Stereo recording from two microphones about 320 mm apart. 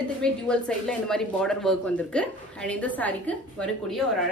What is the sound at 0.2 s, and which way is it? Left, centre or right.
Speech, centre.